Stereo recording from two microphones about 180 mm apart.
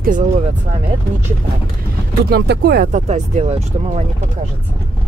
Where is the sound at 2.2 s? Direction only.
65° right (ahead or behind).